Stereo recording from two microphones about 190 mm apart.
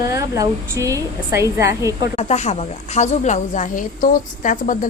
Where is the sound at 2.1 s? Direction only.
35° left (ahead or behind).